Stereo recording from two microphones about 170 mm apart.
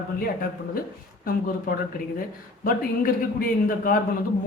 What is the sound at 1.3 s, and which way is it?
Speech, 55° left (ahead or behind).